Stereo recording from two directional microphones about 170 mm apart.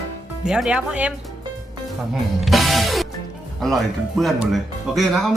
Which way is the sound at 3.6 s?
Centre (ahead or behind).